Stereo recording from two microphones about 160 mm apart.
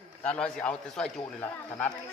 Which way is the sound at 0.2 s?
5° left (ahead or behind).